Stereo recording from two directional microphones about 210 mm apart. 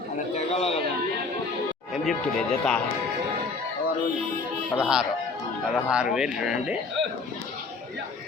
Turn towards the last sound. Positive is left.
turn(degrees=-5)  # may be behind; listen again after turning